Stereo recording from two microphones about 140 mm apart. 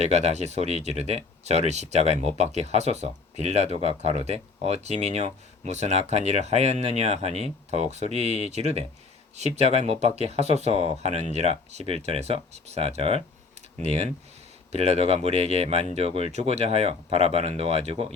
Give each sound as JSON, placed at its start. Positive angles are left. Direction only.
{"t": 0.0, "sound": "speech", "side_deg": -50}